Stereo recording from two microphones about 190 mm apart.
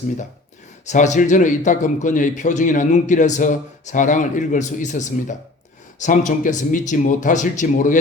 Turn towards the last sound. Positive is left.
turn(degrees=40)  # may be behind; listen again after turning